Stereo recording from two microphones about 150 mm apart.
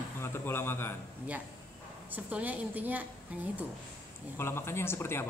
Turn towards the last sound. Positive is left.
turn(degrees=15)  # may be behind; listen again after turning